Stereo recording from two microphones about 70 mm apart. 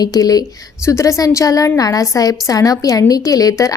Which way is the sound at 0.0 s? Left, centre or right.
Left.